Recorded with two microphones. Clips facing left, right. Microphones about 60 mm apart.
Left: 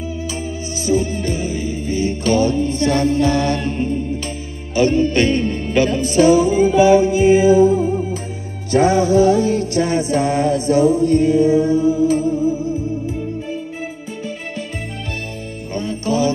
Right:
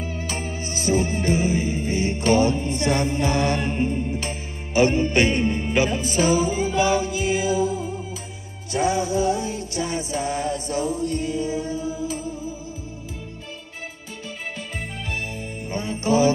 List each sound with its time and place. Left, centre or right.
0.0 s music: right; by 7.1 s centre
7.1 s music: left
8.7 s music: left
15.7 s music: centre